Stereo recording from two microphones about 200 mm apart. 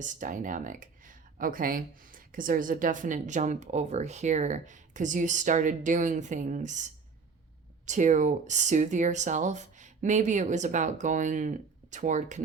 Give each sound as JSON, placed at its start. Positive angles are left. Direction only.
{"t": 0.0, "sound": "speech", "side_deg": -40}
{"t": 7.9, "sound": "speech", "side_deg": -40}